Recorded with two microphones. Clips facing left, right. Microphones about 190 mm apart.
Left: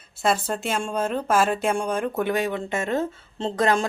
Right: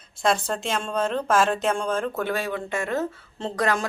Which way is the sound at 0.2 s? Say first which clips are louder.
Even; 5° left (ahead or behind).